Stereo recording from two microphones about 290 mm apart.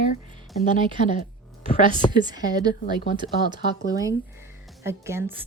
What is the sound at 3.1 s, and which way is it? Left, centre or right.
A woman's voice, centre.